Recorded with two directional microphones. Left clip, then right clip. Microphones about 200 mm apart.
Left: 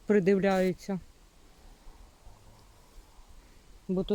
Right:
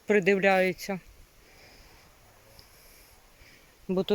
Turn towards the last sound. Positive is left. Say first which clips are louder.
# right 4 dB
turn(degrees=-10)  # may be behind; listen again after turning